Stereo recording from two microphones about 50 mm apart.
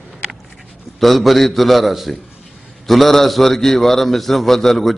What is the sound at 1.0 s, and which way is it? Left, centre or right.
A man's voice, centre.